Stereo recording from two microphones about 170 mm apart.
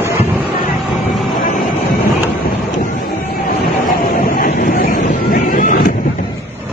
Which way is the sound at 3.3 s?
60° left (ahead or behind).